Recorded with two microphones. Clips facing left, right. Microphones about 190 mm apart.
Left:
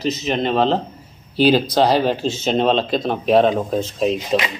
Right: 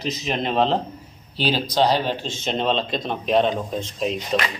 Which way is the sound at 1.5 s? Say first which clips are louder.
Left 3 dB; 50° left (ahead or behind).